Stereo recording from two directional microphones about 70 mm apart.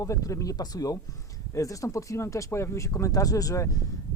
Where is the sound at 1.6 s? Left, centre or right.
Left.